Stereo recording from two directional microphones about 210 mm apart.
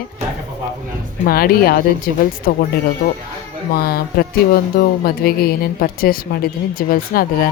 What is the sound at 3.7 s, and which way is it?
Speech, 45° left (ahead or behind).